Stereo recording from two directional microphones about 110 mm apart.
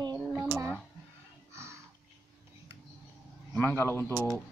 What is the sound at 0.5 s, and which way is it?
Speech, 20° right (ahead or behind).